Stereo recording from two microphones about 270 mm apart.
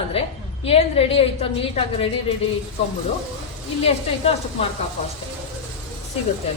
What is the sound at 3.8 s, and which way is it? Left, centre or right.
Speech, left.